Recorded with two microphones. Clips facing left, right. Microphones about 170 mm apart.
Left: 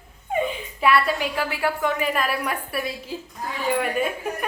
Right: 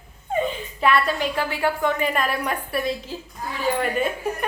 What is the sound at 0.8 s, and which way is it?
A woman's voice, 10° left (ahead or behind).